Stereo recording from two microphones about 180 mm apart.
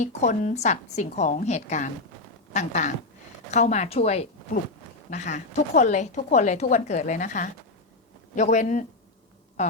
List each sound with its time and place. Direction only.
0.0 s a woman's voice: 40° left (ahead or behind)